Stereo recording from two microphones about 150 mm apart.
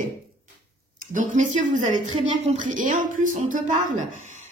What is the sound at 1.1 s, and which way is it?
A woman's voice, 60° right (ahead or behind).